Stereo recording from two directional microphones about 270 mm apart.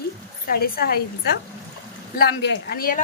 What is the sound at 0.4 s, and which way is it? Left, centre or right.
Speech, left.